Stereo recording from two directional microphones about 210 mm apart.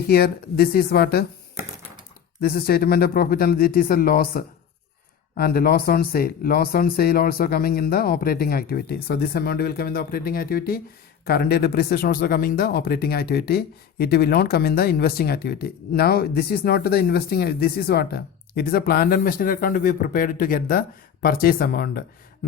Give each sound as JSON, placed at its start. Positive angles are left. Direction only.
{"t": 0.1, "sound": "speech", "side_deg": 45}
{"t": 2.4, "sound": "speech", "side_deg": 45}